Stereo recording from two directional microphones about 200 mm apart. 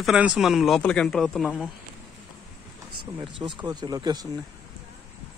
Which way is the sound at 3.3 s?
25° right (ahead or behind).